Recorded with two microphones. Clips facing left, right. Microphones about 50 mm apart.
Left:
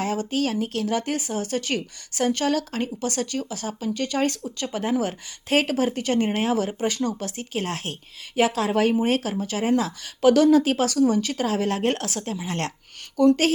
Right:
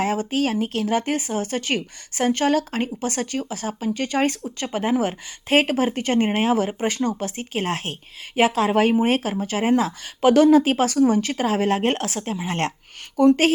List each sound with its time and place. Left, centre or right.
0.0 s speech: right